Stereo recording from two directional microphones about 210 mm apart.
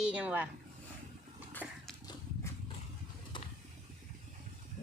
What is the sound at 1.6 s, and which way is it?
Dog, 5° right (ahead or behind).